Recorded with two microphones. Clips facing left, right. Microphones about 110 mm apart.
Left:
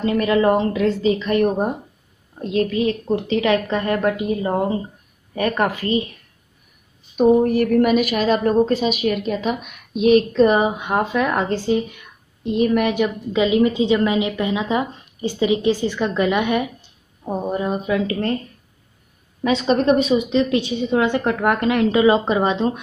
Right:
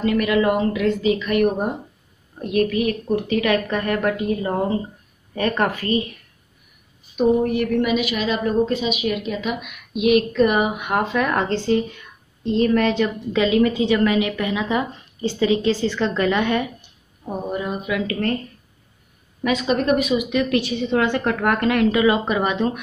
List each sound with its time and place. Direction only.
0.0 s a woman's voice: 30° left (ahead or behind)
7.2 s a woman's voice: 40° left (ahead or behind); by 16.6 s 15° left (ahead or behind)
17.2 s a woman's voice: 30° left (ahead or behind)
19.4 s a woman's voice: 30° left (ahead or behind)